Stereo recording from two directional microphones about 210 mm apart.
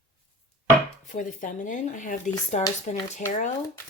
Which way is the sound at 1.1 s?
35° left (ahead or behind).